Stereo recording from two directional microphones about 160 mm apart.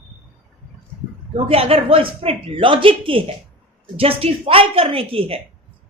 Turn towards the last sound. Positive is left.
turn(degrees=-35)  # may be behind; listen again after turning